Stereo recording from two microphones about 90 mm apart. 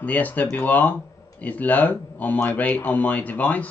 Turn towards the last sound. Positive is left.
turn(degrees=15)  # may be behind; listen again after turning